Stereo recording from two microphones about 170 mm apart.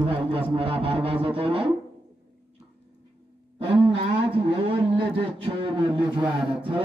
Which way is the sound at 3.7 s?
30° right (ahead or behind).